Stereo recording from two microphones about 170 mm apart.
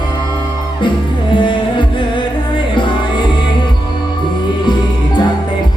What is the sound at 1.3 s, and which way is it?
Music, 30° left (ahead or behind).